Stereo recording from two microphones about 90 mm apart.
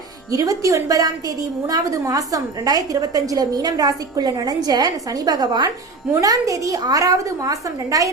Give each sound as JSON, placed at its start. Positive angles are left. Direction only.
{"t": 0.3, "sound": "a woman's voice", "side_deg": -40}